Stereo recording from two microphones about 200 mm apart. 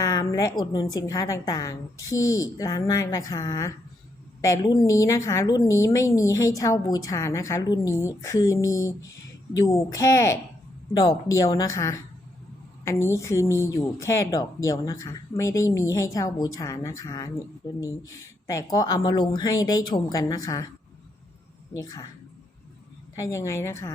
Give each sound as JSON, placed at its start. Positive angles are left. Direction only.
{"t": 0.0, "sound": "speech", "side_deg": 15}
{"t": 21.8, "sound": "speech", "side_deg": 20}
{"t": 23.1, "sound": "speech", "side_deg": 15}